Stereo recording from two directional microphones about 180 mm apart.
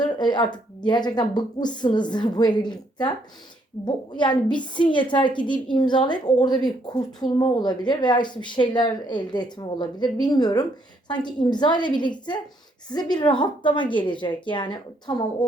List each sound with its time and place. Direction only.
0.0 s a woman's voice: 25° left (ahead or behind)